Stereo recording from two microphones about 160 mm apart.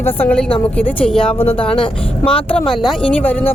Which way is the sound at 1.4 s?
35° left (ahead or behind).